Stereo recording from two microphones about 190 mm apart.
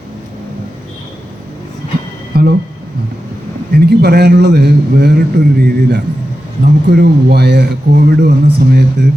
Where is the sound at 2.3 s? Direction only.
55° right (ahead or behind).